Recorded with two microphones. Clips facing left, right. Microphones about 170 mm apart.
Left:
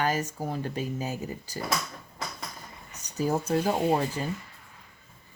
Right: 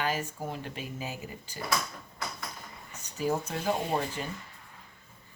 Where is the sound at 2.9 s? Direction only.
40° left (ahead or behind).